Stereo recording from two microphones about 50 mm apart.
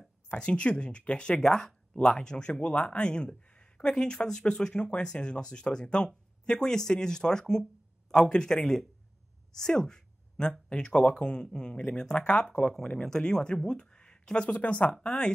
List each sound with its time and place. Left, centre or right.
0.3 s speech: left
9.6 s a sound: centre
10.7 s speech: centre